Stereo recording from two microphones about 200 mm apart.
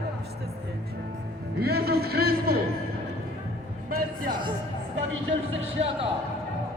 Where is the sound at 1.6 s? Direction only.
50° right (ahead or behind).